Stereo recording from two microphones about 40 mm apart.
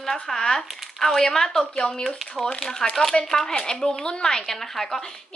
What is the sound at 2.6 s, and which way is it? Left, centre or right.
A woman's voice, centre.